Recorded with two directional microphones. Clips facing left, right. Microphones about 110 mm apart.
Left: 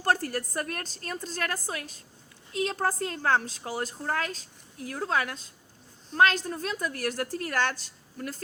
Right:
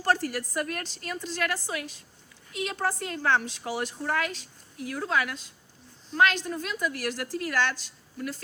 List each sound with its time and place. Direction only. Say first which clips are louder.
0.3 s a woman's voice: right 1 dB; 40° left (ahead or behind)